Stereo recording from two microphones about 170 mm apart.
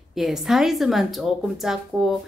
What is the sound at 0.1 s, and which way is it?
A woman's voice, centre (ahead or behind).